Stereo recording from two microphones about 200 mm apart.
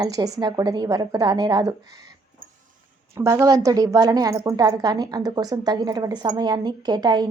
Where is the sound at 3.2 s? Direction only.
15° right (ahead or behind).